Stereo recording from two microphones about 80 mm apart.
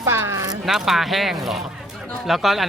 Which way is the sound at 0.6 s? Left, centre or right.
Centre.